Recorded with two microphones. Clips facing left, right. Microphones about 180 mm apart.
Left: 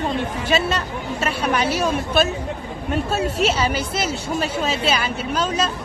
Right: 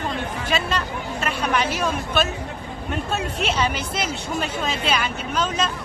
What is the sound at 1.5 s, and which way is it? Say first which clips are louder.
Speech: left 2 dB; 35° left (ahead or behind).